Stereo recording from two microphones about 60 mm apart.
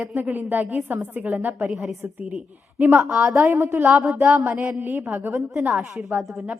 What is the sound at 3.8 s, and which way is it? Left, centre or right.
Speech, centre.